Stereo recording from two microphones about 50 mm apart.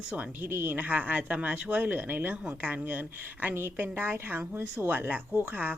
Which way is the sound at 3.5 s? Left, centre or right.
Right.